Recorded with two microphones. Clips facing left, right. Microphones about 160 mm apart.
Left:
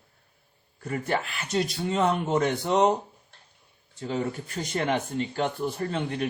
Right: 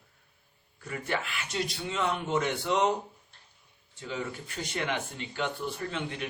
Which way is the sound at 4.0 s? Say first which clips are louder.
Left 6 dB; 40° left (ahead or behind).